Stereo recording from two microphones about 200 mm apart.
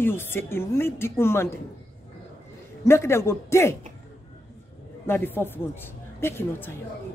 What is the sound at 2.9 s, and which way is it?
Speech, 15° left (ahead or behind).